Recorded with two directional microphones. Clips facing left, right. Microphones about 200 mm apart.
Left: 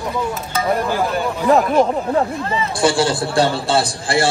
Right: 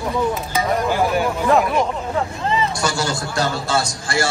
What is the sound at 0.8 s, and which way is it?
Speech, 15° right (ahead or behind).